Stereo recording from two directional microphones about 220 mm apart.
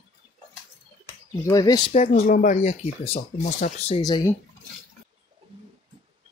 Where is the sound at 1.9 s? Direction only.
30° left (ahead or behind).